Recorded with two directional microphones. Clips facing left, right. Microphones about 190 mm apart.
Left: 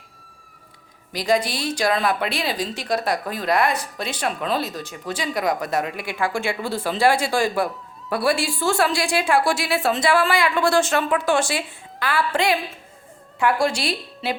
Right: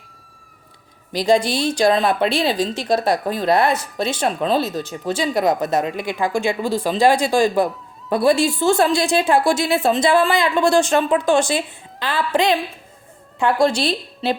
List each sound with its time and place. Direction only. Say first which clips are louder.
1.1 s speech: right 5 dB; 25° right (ahead or behind)